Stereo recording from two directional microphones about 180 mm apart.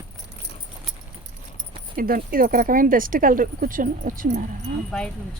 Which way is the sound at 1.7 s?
55° right (ahead or behind).